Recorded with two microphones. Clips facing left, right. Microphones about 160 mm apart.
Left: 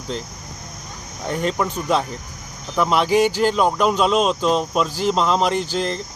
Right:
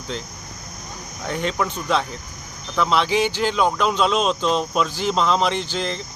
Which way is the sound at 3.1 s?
45° left (ahead or behind).